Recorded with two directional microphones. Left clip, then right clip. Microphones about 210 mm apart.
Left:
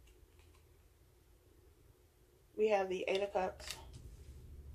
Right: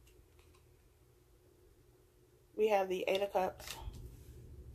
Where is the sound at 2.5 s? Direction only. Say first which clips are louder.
Right 1 dB; 40° right (ahead or behind).